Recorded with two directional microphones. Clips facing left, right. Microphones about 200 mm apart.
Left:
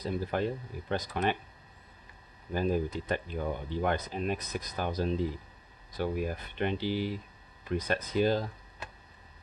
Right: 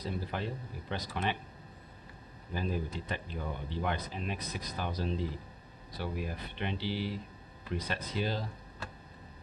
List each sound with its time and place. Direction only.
0.3 s speech: 50° left (ahead or behind)
2.5 s speech: 45° left (ahead or behind)